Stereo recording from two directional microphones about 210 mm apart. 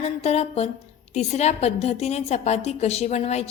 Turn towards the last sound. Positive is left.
turn(degrees=30)  # may be behind; listen again after turning